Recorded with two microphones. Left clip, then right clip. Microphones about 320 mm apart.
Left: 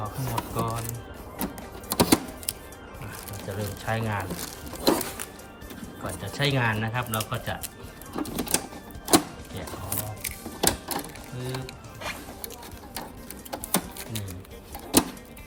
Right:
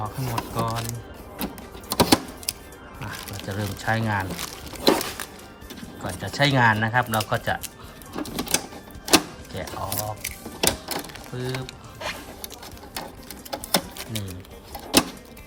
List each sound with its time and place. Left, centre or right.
0.0 s speech: centre
1.9 s music: centre
3.8 s speech: centre
6.1 s speech: centre
8.1 s music: centre
9.0 s a sound: centre
11.4 s music: centre
13.5 s a sound: centre
14.7 s music: centre